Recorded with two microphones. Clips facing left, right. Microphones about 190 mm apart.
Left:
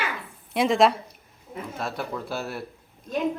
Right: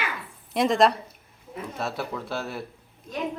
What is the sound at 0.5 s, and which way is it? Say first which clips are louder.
Speech: left 1 dB; centre (ahead or behind).